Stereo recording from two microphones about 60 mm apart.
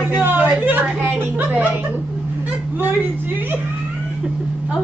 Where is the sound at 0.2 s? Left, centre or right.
Right.